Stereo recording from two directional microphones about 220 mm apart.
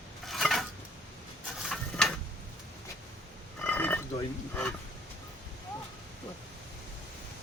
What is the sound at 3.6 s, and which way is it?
Burping, 5° left (ahead or behind).